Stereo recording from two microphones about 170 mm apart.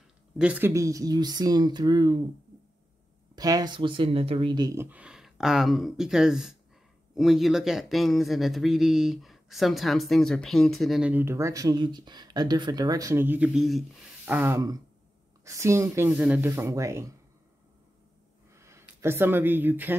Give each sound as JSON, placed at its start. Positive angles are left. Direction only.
{"t": 0.4, "sound": "speech", "side_deg": -10}
{"t": 3.3, "sound": "speech", "side_deg": -20}
{"t": 18.5, "sound": "speech", "side_deg": -15}